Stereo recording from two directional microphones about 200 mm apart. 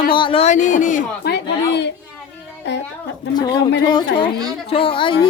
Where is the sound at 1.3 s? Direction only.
60° left (ahead or behind).